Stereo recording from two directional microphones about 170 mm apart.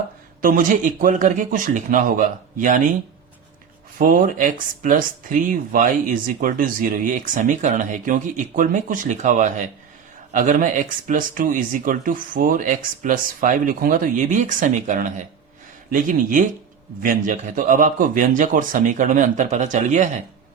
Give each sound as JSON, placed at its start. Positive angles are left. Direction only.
{"t": 1.0, "sound": "speech", "side_deg": -50}
{"t": 3.9, "sound": "speech", "side_deg": -55}